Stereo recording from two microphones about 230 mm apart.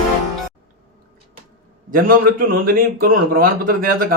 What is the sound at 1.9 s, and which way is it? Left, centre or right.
A man's voice, right.